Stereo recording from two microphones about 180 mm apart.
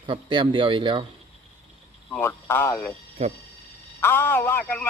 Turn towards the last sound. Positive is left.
turn(degrees=10)  # may be behind; listen again after turning